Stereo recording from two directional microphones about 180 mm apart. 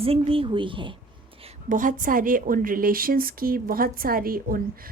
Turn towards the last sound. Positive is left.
turn(degrees=-50)  # may be behind; listen again after turning